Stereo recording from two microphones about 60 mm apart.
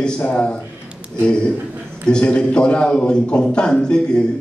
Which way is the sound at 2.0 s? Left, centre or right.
Centre.